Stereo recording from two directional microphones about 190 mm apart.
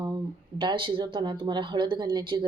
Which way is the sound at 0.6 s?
25° right (ahead or behind).